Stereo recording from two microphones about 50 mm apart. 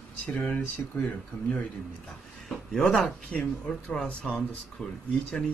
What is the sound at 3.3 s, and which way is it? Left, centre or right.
Speech, centre.